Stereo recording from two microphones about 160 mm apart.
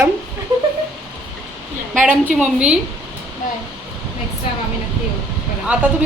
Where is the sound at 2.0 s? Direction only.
10° right (ahead or behind).